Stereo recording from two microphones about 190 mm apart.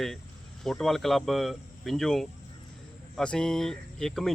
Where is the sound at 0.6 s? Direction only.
Centre (ahead or behind).